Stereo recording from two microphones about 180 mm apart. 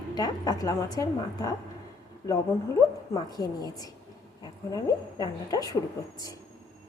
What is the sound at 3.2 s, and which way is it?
A woman's voice, 20° left (ahead or behind).